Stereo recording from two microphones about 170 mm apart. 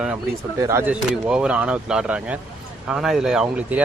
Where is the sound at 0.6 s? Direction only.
15° right (ahead or behind).